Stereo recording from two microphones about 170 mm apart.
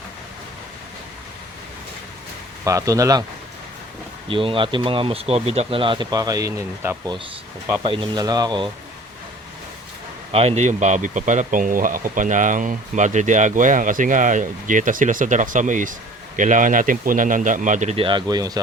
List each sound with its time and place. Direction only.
2.6 s speech: 20° right (ahead or behind)
4.3 s speech: 30° right (ahead or behind)
10.3 s speech: 40° right (ahead or behind); by 18.6 s 20° right (ahead or behind)